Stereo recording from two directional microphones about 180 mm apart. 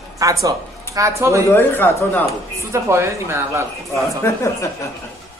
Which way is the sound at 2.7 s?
15° right (ahead or behind).